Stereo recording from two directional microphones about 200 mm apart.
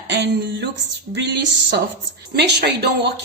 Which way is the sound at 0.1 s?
60° right (ahead or behind).